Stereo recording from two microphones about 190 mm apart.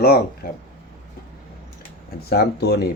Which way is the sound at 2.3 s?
55° left (ahead or behind).